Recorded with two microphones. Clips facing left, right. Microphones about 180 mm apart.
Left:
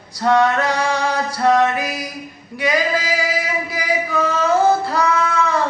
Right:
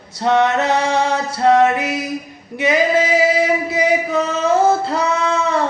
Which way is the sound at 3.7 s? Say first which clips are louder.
Right 5 dB; 25° right (ahead or behind).